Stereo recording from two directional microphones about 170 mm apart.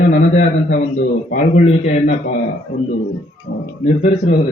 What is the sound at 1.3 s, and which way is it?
Speech, 50° left (ahead or behind).